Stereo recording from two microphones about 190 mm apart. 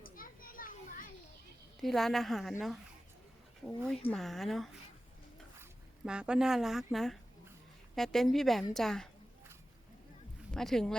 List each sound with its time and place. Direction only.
0.2 s children playing: 50° left (ahead or behind)
1.8 s speech: centre (ahead or behind)
6.1 s speech: 5° right (ahead or behind)
10.5 s speech: centre (ahead or behind)